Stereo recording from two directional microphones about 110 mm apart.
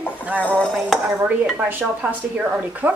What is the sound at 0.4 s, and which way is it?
Stir, 10° left (ahead or behind).